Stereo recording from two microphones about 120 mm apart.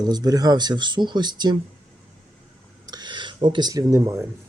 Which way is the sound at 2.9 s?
35° right (ahead or behind).